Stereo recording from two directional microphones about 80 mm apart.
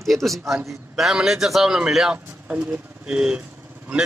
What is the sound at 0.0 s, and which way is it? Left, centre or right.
A man's voice, centre.